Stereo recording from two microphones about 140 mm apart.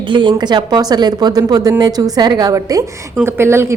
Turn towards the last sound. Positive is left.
turn(degrees=-20)  # may be behind; listen again after turning